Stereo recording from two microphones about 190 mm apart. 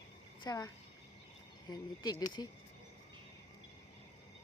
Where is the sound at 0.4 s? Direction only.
20° left (ahead or behind).